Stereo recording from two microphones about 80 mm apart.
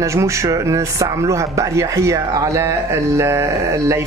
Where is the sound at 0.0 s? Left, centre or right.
Right.